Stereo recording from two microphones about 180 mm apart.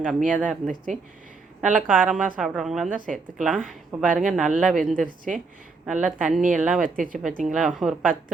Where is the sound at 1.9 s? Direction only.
5° right (ahead or behind).